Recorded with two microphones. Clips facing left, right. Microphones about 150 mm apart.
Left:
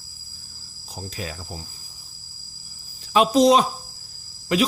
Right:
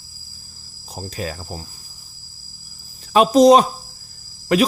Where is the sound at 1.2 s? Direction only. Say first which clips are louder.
Right 6 dB; 50° right (ahead or behind).